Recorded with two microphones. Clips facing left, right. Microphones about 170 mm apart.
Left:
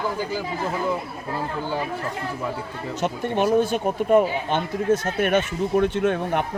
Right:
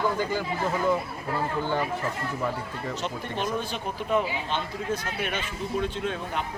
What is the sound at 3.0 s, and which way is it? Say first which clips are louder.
Speech: left 11 dB; 55° left (ahead or behind).